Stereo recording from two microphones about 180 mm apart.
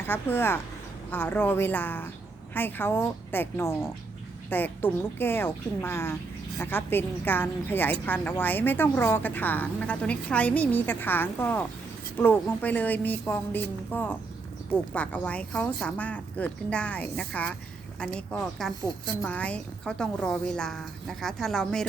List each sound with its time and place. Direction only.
0.1 s a woman's voice: 10° left (ahead or behind)